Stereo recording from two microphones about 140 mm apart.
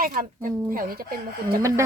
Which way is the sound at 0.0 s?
80° right.